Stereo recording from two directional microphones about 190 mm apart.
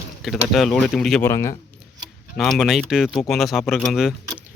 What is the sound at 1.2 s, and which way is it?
Speech, 15° left (ahead or behind).